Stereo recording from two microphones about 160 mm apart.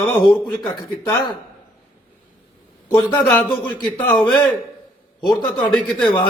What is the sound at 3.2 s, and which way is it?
Speech, 5° left (ahead or behind).